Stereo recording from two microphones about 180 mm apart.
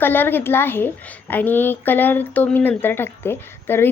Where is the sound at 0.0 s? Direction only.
10° left (ahead or behind).